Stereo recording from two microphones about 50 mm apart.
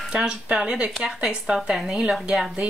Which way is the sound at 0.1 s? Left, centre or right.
Right.